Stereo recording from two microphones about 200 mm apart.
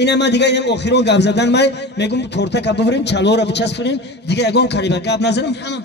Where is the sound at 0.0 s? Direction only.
60° left (ahead or behind).